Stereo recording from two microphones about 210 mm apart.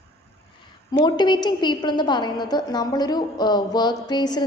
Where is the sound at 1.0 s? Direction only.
20° left (ahead or behind).